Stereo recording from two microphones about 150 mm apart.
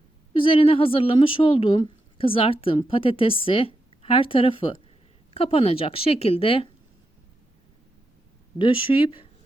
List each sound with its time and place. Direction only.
0.3 s speech: 35° left (ahead or behind)
8.5 s speech: 35° left (ahead or behind)